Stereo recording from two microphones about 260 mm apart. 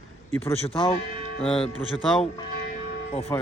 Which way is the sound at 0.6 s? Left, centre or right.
Left.